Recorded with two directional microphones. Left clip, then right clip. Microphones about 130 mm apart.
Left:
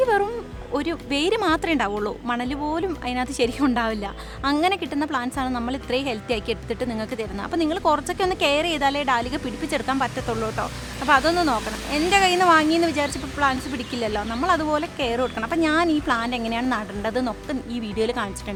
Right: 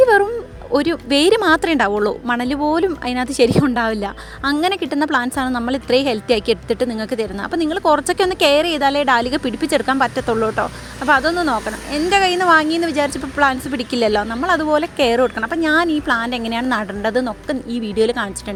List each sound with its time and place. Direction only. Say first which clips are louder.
0.0 s music: right 8 dB; 40° right (ahead or behind)
0.7 s a woman's voice: right 9 dB; 40° right (ahead or behind)
8.0 s a woman's voice: right 7 dB; 40° right (ahead or behind)
14.9 s a woman's voice: right 8 dB; 40° right (ahead or behind)
15.4 s speech: right 3 dB; 20° right (ahead or behind)
15.7 s a woman's voice: right 7 dB; 30° right (ahead or behind)